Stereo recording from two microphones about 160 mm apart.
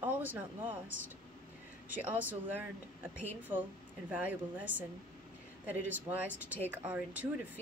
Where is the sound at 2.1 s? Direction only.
10° right (ahead or behind).